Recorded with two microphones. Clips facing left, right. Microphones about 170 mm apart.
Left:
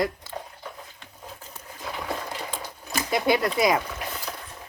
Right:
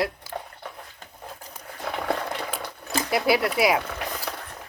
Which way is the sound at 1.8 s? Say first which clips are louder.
Right 4 dB; 60° right (ahead or behind).